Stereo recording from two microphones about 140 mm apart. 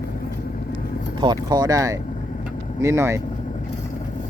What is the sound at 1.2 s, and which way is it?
Speech, 30° right (ahead or behind).